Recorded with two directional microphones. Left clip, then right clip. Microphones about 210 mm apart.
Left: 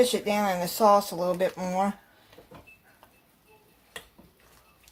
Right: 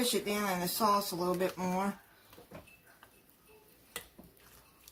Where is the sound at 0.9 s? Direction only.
45° left (ahead or behind).